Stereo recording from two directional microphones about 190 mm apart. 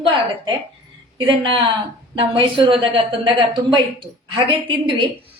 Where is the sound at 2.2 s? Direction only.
25° right (ahead or behind).